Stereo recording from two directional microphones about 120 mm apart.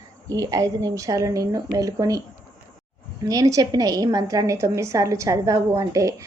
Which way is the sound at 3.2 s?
30° right (ahead or behind).